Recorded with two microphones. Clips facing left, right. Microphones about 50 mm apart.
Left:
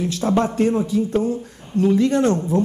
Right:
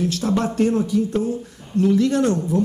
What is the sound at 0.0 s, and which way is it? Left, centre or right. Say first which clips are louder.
A woman's voice: left 2 dB; left.